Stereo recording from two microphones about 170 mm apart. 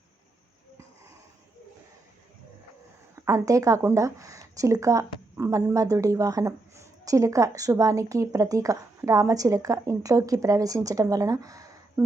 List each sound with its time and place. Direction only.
3.2 s speech: 20° right (ahead or behind)